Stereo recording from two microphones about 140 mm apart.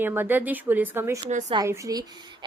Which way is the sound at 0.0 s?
15° right (ahead or behind).